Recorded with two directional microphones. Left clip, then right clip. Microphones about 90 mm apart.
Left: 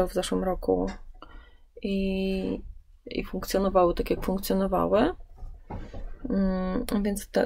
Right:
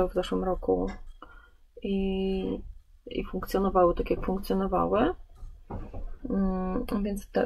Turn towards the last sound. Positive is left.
turn(degrees=20)  # may be behind; listen again after turning